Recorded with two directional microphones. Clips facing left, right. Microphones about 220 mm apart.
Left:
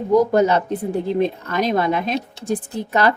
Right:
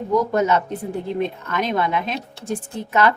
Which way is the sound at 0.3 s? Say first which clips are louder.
Left 3 dB; 35° left (ahead or behind).